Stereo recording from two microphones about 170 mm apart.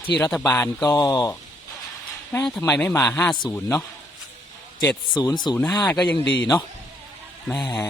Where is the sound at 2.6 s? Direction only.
10° left (ahead or behind).